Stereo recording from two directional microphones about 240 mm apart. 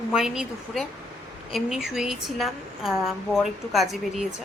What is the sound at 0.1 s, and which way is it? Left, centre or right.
Speech, centre.